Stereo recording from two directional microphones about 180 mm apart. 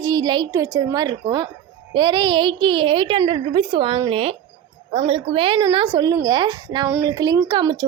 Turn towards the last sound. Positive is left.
turn(degrees=-25)  # may be behind; listen again after turning